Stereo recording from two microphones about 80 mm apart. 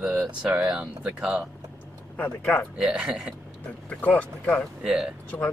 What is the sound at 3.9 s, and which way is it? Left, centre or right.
Speech, centre.